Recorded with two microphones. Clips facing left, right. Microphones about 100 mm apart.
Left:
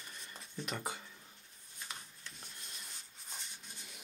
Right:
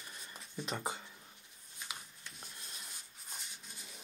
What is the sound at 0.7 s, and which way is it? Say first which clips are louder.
Speech: right 2 dB; 25° right (ahead or behind).